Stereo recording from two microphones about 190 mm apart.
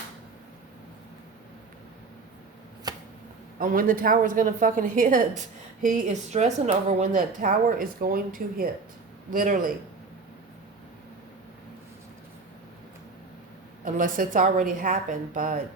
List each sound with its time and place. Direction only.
2.9 s a sound: 20° right (ahead or behind)
3.6 s a woman's voice: 50° right (ahead or behind)
13.8 s a woman's voice: 45° right (ahead or behind)